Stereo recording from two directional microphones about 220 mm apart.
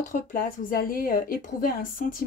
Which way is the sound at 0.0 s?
35° left (ahead or behind).